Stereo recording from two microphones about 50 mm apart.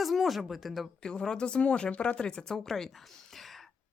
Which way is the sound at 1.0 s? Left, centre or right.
Centre.